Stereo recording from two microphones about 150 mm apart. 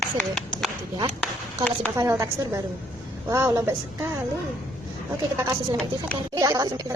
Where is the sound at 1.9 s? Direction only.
20° right (ahead or behind).